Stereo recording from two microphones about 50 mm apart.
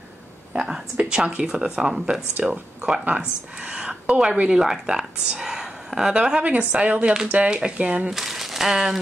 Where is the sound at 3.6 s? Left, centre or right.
Right.